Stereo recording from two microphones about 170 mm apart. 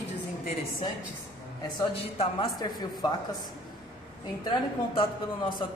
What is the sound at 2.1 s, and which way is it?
Speech, 25° left (ahead or behind).